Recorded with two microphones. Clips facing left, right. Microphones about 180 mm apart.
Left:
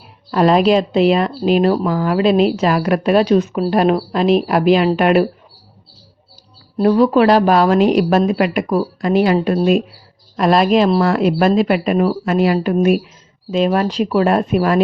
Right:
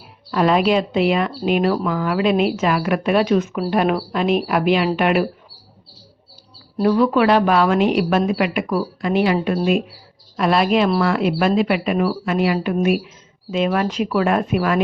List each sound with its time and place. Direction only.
0.3 s speech: 40° left (ahead or behind)
6.8 s speech: 35° left (ahead or behind)